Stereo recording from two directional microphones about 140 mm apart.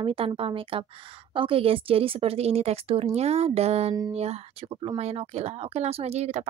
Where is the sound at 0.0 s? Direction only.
40° right (ahead or behind).